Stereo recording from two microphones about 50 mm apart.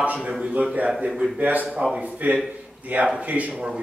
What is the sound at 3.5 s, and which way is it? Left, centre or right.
Speech, centre.